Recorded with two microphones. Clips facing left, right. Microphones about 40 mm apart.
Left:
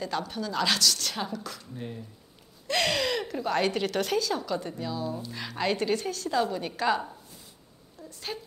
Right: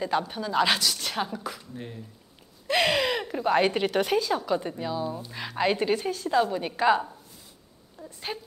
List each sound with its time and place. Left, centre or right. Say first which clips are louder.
0.0 s a woman's voice: right 4 dB; centre
8.0 s a woman's voice: right 2 dB; centre